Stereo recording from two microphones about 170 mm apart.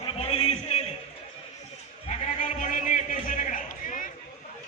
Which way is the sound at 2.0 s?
45° left (ahead or behind).